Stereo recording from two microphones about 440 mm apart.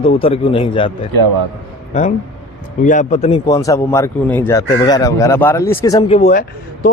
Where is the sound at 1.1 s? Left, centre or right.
Right.